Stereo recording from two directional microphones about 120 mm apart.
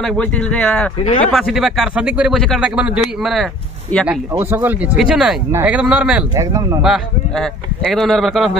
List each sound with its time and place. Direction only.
0.0 s speech: 10° left (ahead or behind)
3.9 s speech: 15° left (ahead or behind)
4.3 s speech: 20° right (ahead or behind)
4.9 s speech: centre (ahead or behind)
5.5 s speech: 15° right (ahead or behind)
6.3 s speech: 25° right (ahead or behind)
6.8 s speech: 5° right (ahead or behind)